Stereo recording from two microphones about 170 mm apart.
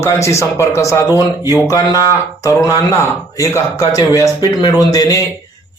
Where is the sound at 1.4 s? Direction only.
15° right (ahead or behind).